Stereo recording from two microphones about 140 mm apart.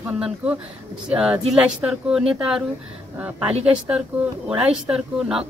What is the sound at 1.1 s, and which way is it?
Speech, 5° right (ahead or behind).